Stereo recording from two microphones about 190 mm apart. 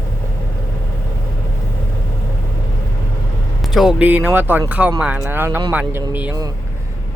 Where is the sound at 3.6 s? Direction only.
Centre (ahead or behind).